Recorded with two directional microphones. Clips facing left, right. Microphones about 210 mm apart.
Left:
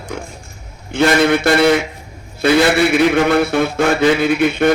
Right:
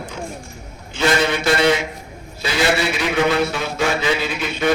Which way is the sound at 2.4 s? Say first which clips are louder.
Left 7 dB; 55° left (ahead or behind).